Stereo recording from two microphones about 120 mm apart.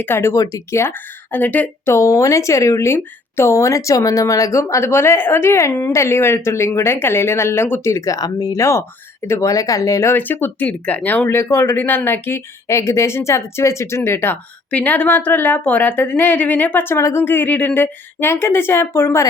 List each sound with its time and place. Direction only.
0.0 s speech: 20° left (ahead or behind)